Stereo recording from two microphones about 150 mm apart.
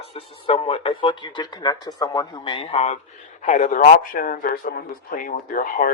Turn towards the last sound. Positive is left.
turn(degrees=65)  # may be behind; listen again after turning